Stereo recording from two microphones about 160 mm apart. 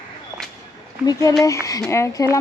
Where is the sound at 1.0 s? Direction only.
25° left (ahead or behind).